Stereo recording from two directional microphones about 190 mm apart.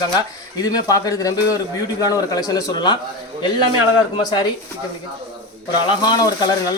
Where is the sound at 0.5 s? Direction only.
20° left (ahead or behind).